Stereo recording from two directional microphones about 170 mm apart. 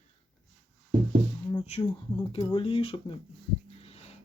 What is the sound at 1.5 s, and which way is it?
Speech, 35° left (ahead or behind).